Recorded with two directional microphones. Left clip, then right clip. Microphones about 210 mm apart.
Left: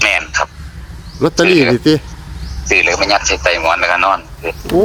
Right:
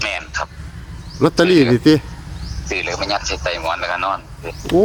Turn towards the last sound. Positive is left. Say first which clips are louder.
# left 8 dB
turn(degrees=30)  # may be behind; listen again after turning